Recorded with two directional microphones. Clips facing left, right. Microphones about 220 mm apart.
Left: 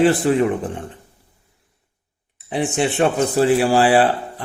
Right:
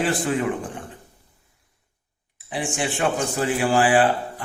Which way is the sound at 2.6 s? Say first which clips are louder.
Left 6 dB; 35° left (ahead or behind).